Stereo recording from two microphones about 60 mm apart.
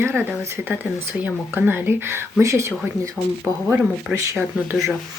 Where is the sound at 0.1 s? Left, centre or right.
Right.